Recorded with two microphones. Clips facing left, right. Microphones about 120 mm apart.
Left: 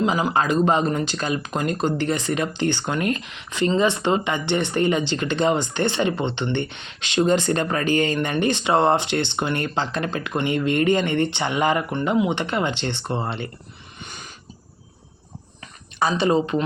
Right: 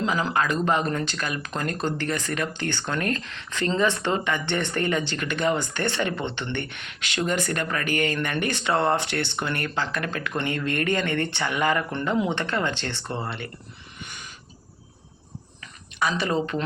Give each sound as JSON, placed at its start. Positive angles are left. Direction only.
{"t": 0.0, "sound": "speech", "side_deg": 20}
{"t": 16.0, "sound": "speech", "side_deg": 25}